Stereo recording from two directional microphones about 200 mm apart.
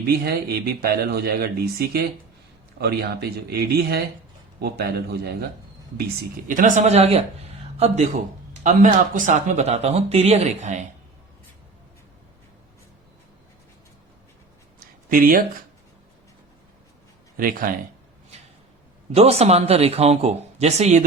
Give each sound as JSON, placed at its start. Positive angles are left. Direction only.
{"t": 0.1, "sound": "speech", "side_deg": -50}
{"t": 6.5, "sound": "speech", "side_deg": -40}
{"t": 15.1, "sound": "speech", "side_deg": -45}
{"t": 17.3, "sound": "speech", "side_deg": -45}
{"t": 19.1, "sound": "speech", "side_deg": -30}